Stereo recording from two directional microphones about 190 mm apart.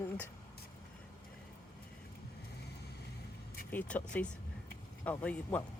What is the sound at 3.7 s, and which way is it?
Speech, 5° left (ahead or behind).